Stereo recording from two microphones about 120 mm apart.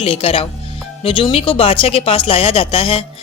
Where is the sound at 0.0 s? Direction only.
55° left (ahead or behind).